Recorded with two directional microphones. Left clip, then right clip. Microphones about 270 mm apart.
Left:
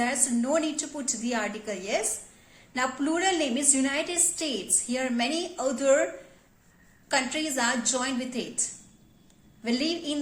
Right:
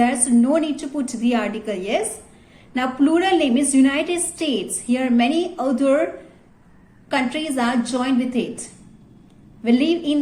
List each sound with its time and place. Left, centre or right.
0.0 s a woman's voice: centre
7.1 s a woman's voice: centre
9.6 s a woman's voice: centre